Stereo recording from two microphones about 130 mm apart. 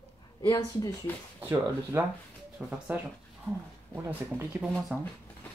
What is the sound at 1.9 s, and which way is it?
Speech, 20° right (ahead or behind).